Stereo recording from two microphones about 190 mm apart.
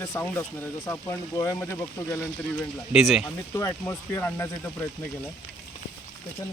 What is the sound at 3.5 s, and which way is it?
Speech, 15° left (ahead or behind).